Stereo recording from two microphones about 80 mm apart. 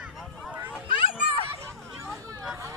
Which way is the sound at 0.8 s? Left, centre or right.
Left.